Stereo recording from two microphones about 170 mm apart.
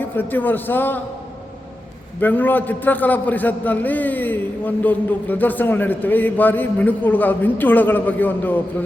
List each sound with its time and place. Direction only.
0.0 s a man's voice: 10° left (ahead or behind)
2.2 s a man's voice: 10° left (ahead or behind)